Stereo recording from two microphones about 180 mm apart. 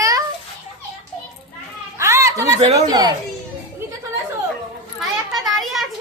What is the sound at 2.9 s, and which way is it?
Speech, 20° right (ahead or behind).